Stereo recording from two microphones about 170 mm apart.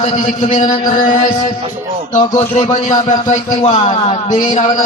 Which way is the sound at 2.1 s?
45° left (ahead or behind).